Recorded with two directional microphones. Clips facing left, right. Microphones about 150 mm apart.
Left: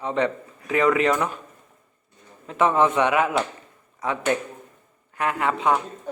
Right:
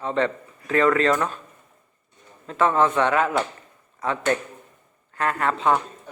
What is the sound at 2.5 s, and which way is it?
Speech, 15° left (ahead or behind).